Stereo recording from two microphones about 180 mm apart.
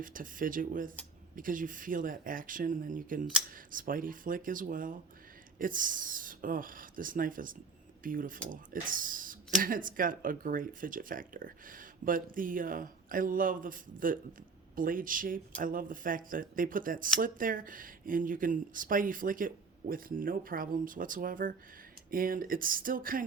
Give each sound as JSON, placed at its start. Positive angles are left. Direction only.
{"t": 0.0, "sound": "speech", "side_deg": -50}